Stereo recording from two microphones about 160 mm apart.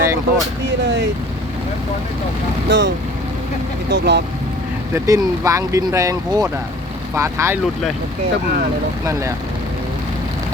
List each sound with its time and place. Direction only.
0.0 s speech: 15° right (ahead or behind)
2.6 s speech: 90° right
4.9 s speech: 20° right (ahead or behind)